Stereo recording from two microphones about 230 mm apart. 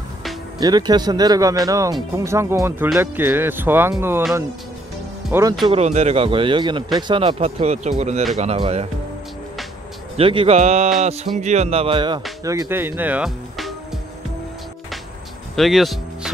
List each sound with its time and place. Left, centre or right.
0.6 s speech: centre
5.7 s speech: right
10.1 s speech: right; by 13.7 s centre
15.5 s music: centre